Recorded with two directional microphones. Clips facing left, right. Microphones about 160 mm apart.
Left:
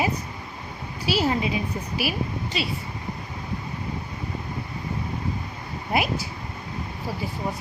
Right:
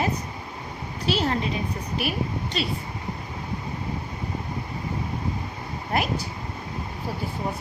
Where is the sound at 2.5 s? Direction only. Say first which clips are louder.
Even; 5° left (ahead or behind).